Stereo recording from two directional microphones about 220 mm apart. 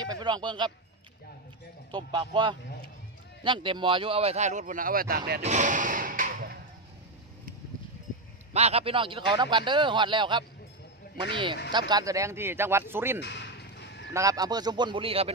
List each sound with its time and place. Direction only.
0.0 s speech: 20° right (ahead or behind)
1.9 s speech: 20° right (ahead or behind); by 5.4 s 45° right (ahead or behind)
5.4 s slam: 35° right (ahead or behind)
8.5 s speech: 30° right (ahead or behind)
11.9 s speech: 15° right (ahead or behind)
13.2 s a sound: 50° left (ahead or behind)
14.1 s speech: 15° right (ahead or behind)